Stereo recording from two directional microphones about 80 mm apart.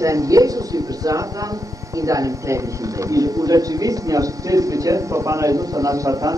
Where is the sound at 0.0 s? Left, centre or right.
Right.